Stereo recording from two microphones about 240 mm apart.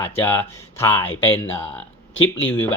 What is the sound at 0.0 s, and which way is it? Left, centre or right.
Speech, centre.